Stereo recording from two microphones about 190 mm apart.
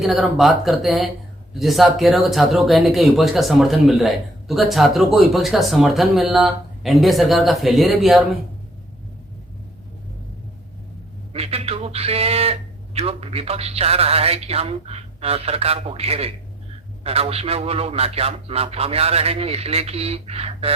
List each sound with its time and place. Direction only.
0.0 s speech: centre (ahead or behind)
11.3 s speech: 30° right (ahead or behind)